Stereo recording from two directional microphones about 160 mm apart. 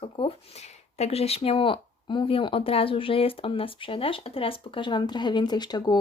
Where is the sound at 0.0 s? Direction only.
35° left (ahead or behind).